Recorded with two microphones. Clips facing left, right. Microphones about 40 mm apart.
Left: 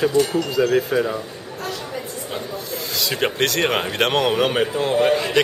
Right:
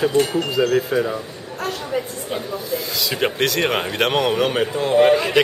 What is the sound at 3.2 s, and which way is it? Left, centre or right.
Speech, centre.